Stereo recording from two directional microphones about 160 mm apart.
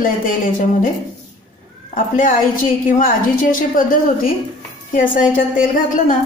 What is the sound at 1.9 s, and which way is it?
A woman's voice, 55° left (ahead or behind).